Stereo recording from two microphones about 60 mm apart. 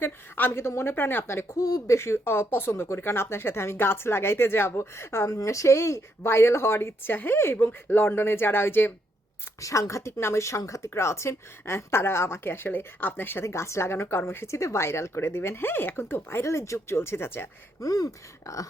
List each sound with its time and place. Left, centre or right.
0.0 s speech: left
1.5 s speech: left
2.0 s speech: left
5.4 s speech: left
9.6 s speech: left
13.4 s speech: left
17.7 s speech: left